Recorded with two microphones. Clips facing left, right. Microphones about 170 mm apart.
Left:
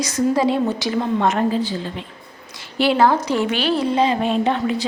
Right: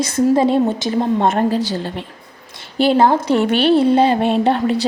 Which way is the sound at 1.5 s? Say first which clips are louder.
Right 3 dB; 75° right (ahead or behind).